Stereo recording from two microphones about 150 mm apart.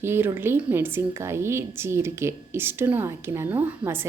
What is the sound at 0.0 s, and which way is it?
A woman's voice, 15° right (ahead or behind).